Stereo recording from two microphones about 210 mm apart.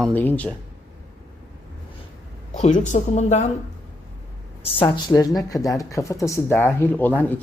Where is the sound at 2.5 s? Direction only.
35° left (ahead or behind).